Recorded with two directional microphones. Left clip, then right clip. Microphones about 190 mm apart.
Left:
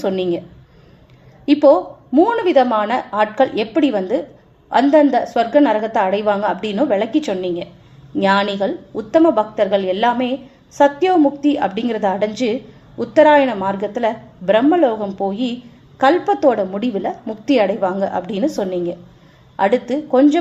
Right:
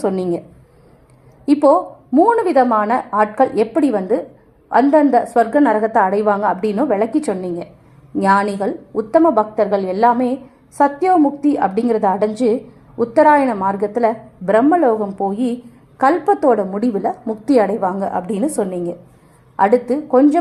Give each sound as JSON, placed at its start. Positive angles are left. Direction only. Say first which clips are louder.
{"t": 0.0, "sound": "a woman's voice", "louder": "even", "side_deg": -25}
{"t": 1.6, "sound": "a woman's voice", "louder": "left 1 dB", "side_deg": -25}
{"t": 9.2, "sound": "a woman's voice", "louder": "even", "side_deg": -15}
{"t": 11.1, "sound": "a woman's voice", "louder": "right 1 dB", "side_deg": -30}